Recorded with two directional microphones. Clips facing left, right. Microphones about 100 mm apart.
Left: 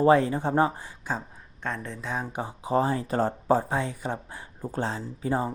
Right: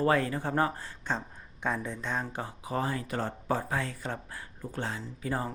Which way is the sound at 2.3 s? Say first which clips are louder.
Left 5 dB; 20° left (ahead or behind).